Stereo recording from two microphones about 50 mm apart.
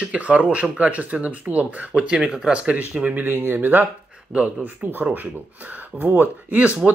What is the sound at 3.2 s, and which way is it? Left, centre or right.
Speech, right.